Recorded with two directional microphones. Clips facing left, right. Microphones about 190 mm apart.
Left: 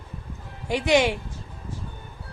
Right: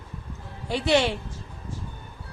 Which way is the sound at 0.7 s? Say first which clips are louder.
Left 2 dB; 15° left (ahead or behind).